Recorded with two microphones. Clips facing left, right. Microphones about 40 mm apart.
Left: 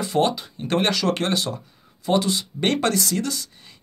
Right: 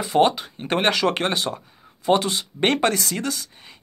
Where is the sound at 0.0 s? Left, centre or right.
Right.